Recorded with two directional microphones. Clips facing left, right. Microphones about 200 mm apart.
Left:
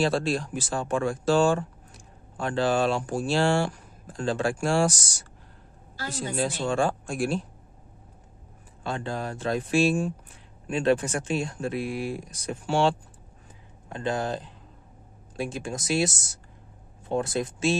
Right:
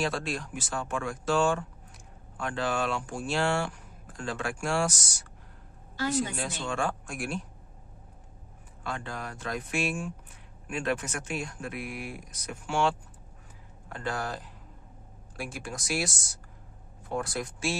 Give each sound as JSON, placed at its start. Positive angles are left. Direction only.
{"t": 0.0, "sound": "speech", "side_deg": 30}
{"t": 8.8, "sound": "speech", "side_deg": 30}
{"t": 13.8, "sound": "speech", "side_deg": 20}